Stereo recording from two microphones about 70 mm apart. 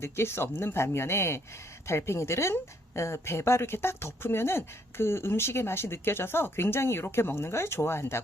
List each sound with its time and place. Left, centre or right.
0.0 s speech: left